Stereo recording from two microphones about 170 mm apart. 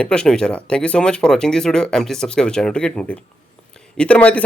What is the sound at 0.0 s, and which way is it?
Speech, 5° left (ahead or behind).